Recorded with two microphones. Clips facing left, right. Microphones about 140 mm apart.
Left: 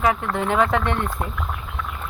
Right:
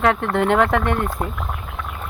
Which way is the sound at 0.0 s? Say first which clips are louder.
Right 3 dB; 70° right (ahead or behind).